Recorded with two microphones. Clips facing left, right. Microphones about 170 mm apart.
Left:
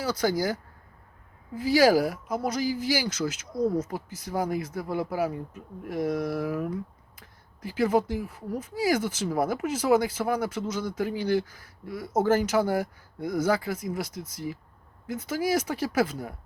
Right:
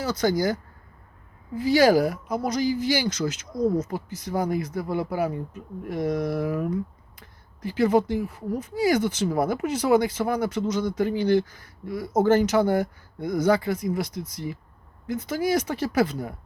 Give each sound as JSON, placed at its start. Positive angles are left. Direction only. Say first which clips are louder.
{"t": 0.0, "sound": "speech", "louder": "right 3 dB", "side_deg": 10}